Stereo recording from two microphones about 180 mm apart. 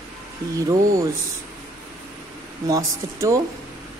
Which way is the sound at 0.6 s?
20° right (ahead or behind).